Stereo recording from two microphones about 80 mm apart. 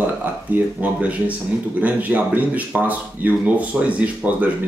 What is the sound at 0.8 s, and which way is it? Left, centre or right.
Speech, centre.